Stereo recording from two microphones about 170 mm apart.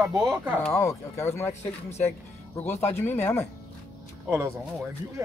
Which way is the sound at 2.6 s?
10° left (ahead or behind).